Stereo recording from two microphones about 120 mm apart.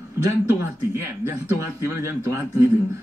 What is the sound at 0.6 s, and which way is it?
A man's voice, 20° right (ahead or behind).